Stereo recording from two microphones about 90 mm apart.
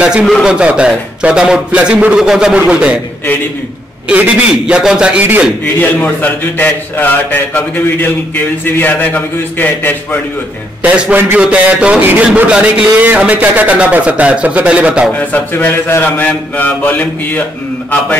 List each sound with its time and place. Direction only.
0.2 s a man's voice: 5° left (ahead or behind)
0.5 s a man's voice: 10° right (ahead or behind)
4.1 s a man's voice: 15° right (ahead or behind)
5.8 s a man's voice: 20° left (ahead or behind)
10.8 s a man's voice: 15° right (ahead or behind)
15.1 s a man's voice: 20° left (ahead or behind)